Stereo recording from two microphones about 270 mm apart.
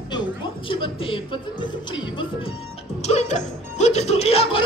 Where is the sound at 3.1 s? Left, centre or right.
Left.